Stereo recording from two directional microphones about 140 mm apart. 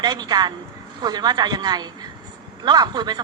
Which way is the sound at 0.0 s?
30° right (ahead or behind).